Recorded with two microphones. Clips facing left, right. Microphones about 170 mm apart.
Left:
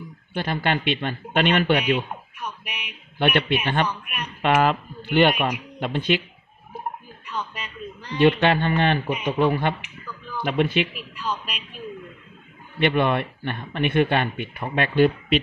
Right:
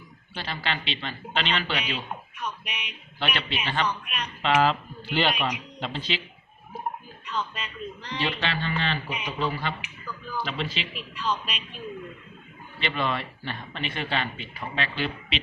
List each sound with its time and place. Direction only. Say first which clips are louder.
0.3 s a man's voice: left 8 dB; 55° left (ahead or behind)
2.4 s speech: even; 10° left (ahead or behind)
3.2 s speech: left 9 dB; 55° left (ahead or behind)
7.3 s speech: even; 10° left (ahead or behind)
8.2 s speech: left 12 dB; 55° left (ahead or behind)
11.0 s speech: even; 10° left (ahead or behind)
12.7 s speech: left 8 dB; 55° left (ahead or behind)